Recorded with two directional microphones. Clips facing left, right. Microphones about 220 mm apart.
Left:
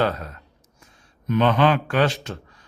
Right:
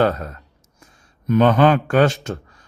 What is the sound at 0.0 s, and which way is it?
A man's voice, 45° right (ahead or behind).